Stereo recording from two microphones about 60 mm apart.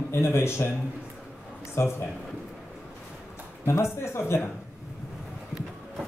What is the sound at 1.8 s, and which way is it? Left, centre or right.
Speech, left.